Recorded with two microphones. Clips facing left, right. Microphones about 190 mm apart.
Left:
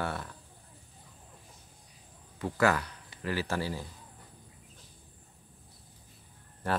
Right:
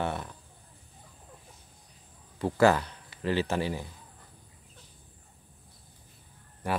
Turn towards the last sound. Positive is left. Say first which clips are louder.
# right 1 dB
turn(degrees=-15)  # may be behind; listen again after turning